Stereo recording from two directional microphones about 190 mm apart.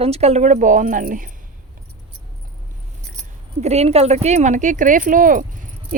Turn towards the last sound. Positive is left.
turn(degrees=-45)  # may be behind; listen again after turning